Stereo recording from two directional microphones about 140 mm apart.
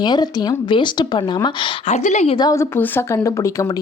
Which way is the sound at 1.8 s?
55° left (ahead or behind).